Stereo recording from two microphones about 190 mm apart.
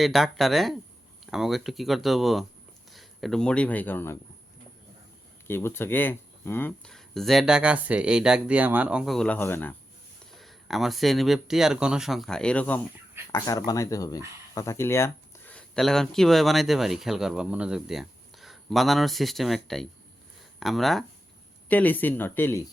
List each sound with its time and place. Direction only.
0.0 s speech: centre (ahead or behind)
5.5 s speech: 10° left (ahead or behind)
10.3 s speech: centre (ahead or behind)
13.3 s speech: 20° left (ahead or behind)